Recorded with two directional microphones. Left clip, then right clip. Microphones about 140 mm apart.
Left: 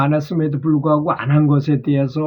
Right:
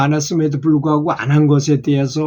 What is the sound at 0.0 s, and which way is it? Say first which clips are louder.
Speech: right 2 dB; 5° right (ahead or behind).